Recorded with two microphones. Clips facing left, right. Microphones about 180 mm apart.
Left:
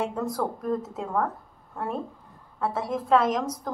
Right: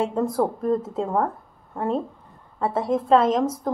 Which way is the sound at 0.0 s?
25° right (ahead or behind).